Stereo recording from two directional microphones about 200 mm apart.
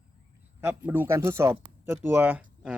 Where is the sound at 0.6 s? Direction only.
10° right (ahead or behind).